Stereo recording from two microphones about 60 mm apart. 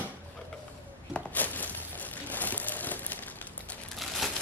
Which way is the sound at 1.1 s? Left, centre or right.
Left.